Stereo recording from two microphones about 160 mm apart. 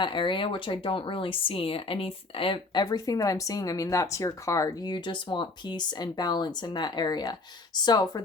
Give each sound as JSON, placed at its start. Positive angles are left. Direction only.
{"t": 0.0, "sound": "speech", "side_deg": 30}